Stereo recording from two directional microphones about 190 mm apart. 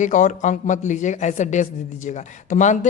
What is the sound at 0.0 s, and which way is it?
A man's voice, 40° left (ahead or behind).